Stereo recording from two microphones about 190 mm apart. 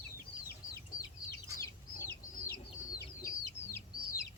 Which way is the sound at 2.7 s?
15° left (ahead or behind).